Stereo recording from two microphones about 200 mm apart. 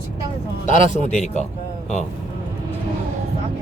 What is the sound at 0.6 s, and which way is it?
Speech, 35° left (ahead or behind).